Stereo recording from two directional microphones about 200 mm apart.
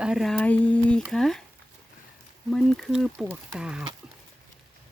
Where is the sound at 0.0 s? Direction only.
Centre (ahead or behind).